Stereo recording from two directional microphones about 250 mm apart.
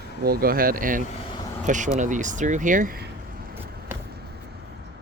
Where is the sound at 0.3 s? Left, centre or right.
Right.